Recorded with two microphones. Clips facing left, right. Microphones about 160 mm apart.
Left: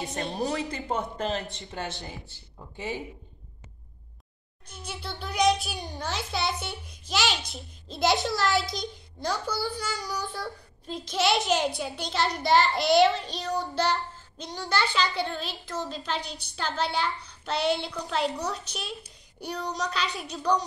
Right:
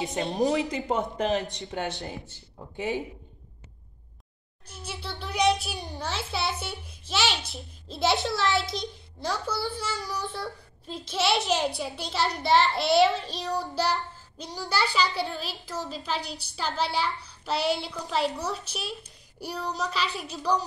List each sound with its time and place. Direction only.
0.0 s speech: 20° right (ahead or behind)
4.7 s a child's voice: 5° right (ahead or behind)